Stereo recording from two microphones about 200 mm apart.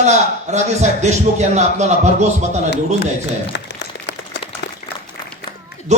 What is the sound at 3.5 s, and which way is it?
Applause, 60° left (ahead or behind).